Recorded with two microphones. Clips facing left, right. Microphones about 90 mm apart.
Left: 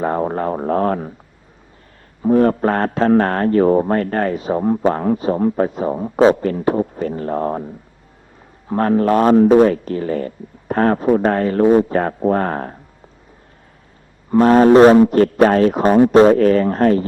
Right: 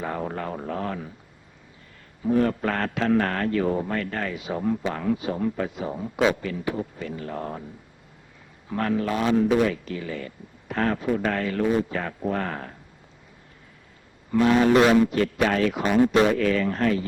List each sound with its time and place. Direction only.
0.0 s speech: 40° left (ahead or behind)
2.2 s a man's voice: 40° left (ahead or behind)
8.7 s a man's voice: 40° left (ahead or behind)
14.3 s a man's voice: 40° left (ahead or behind)